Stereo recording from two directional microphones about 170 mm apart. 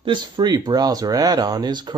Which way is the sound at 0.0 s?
25° right (ahead or behind).